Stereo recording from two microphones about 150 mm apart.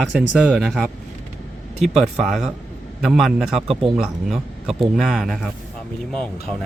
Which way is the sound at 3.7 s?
35° right (ahead or behind).